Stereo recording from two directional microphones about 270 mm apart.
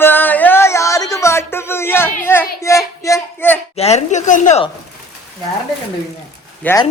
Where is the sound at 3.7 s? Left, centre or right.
Left.